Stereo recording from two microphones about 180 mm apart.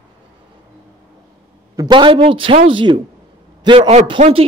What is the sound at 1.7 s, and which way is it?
A man's voice, 20° right (ahead or behind).